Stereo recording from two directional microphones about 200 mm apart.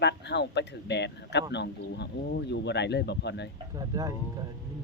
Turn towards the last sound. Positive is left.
turn(degrees=-20)  # may be behind; listen again after turning